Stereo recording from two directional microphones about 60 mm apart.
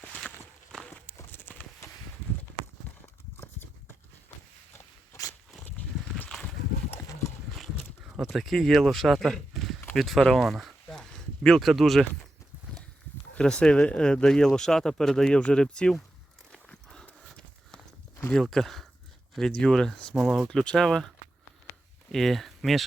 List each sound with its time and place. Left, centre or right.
1.3 s clip-clop: left
5.7 s a sound: left
7.1 s clip-clop: left
8.0 s speech: centre
10.3 s a sound: centre
13.4 s speech: centre
16.5 s walk: centre
18.5 s speech: centre
20.1 s speech: centre
20.5 s speech: centre
22.1 s speech: centre